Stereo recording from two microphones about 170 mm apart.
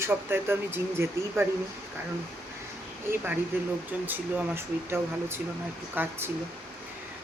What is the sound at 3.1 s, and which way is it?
Speech, 10° right (ahead or behind).